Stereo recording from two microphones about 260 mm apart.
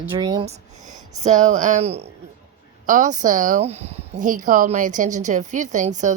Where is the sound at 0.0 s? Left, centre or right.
Centre.